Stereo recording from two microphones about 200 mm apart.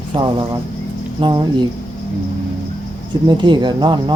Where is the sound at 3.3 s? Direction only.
20° right (ahead or behind).